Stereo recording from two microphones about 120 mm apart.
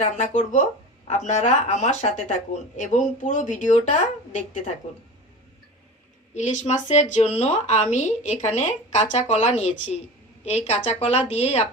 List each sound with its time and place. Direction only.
0.0 s speech: 90° left
6.3 s a woman's voice: 80° left; by 11.6 s 60° left (ahead or behind)